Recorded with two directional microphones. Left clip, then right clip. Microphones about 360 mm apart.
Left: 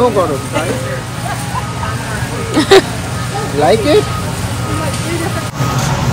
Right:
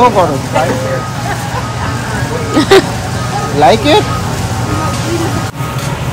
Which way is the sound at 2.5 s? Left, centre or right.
Centre.